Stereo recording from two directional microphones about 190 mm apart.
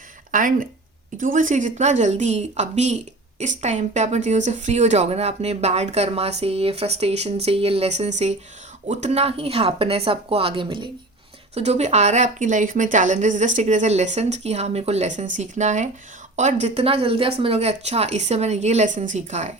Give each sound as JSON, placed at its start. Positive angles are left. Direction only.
{"t": 0.3, "sound": "speech", "side_deg": -45}